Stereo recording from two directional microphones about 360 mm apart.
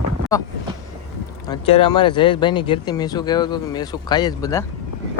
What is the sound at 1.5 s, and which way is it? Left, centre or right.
Speech, centre.